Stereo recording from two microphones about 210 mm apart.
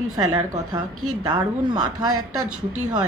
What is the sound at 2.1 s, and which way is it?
Speech, 90° right.